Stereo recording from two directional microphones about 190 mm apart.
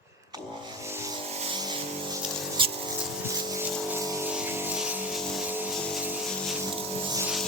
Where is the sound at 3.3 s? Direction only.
15° right (ahead or behind).